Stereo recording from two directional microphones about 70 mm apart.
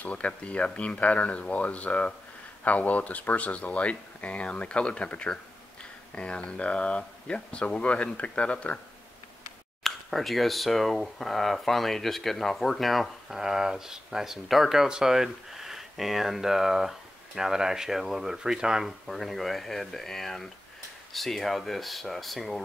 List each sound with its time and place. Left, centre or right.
0.0 s speech: centre
9.8 s speech: centre